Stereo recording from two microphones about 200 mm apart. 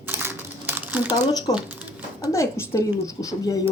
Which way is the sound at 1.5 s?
10° right (ahead or behind).